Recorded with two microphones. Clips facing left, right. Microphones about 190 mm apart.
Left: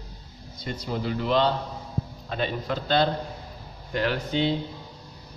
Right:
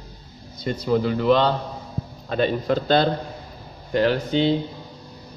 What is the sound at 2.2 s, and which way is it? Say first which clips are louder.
Speech: right 8 dB; 45° right (ahead or behind).